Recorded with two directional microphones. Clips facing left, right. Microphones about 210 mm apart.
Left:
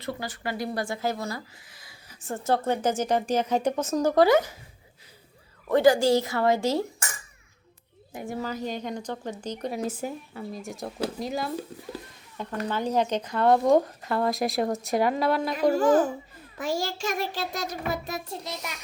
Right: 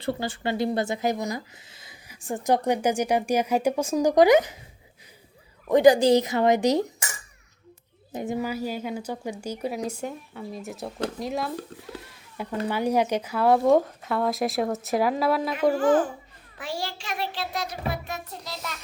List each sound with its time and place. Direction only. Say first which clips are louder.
0.0 s speech: right 5 dB; 25° right (ahead or behind)
5.6 s speech: right 3 dB; 15° right (ahead or behind)
8.1 s a woman's voice: right 4 dB; 20° right (ahead or behind); by 11.9 s centre (ahead or behind)
12.6 s a woman's voice: right 2 dB; 10° right (ahead or behind)
15.7 s a child's voice: left 1 dB; 40° left (ahead or behind)
16.6 s child singing: left 4 dB; 45° left (ahead or behind)
18.4 s a child's voice: even; 15° left (ahead or behind)